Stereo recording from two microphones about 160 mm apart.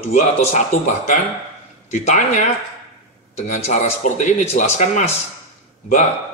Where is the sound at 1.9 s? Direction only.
45° left (ahead or behind).